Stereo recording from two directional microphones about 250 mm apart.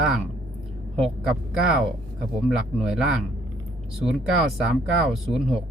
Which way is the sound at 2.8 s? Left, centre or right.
Centre.